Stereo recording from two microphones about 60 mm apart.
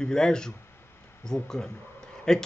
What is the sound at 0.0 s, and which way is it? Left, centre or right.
Speech, centre.